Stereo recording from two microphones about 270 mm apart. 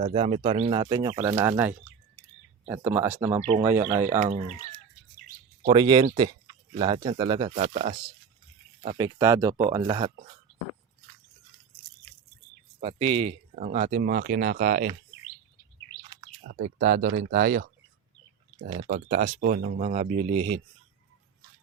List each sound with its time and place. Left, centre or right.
0.0 s speech: right
4.2 s speech: right
5.6 s speech: centre
12.8 s speech: right
16.5 s speech: right
18.8 s speech: right